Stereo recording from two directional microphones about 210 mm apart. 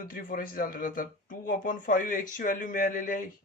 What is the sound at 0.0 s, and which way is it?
A man's voice, 40° left (ahead or behind).